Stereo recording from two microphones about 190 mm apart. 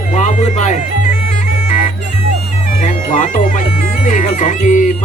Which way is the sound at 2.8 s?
40° left (ahead or behind).